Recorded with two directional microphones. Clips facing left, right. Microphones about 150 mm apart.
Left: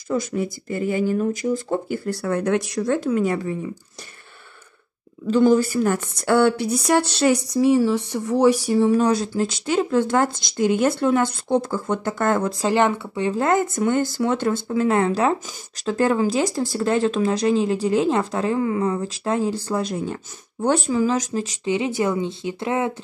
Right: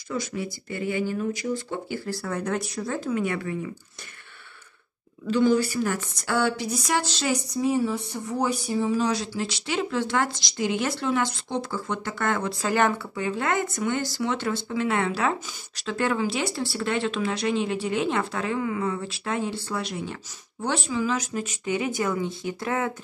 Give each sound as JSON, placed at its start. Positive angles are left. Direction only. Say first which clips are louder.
{"t": 0.1, "sound": "a woman's voice", "louder": "left 7 dB", "side_deg": 45}
{"t": 2.0, "sound": "speech", "louder": "left 7 dB", "side_deg": 65}
{"t": 3.2, "sound": "speech", "louder": "left 5 dB", "side_deg": 35}
{"t": 5.3, "sound": "a woman's voice", "louder": "left 5 dB", "side_deg": 45}
{"t": 12.6, "sound": "speech", "louder": "left 3 dB", "side_deg": 25}